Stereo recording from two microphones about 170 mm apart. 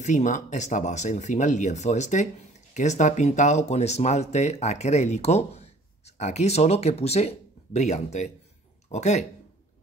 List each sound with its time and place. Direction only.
0.0 s speech: 45° left (ahead or behind)